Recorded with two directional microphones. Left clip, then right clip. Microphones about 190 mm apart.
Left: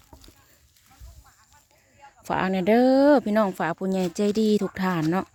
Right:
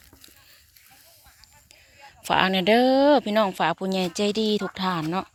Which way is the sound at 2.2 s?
5° left (ahead or behind).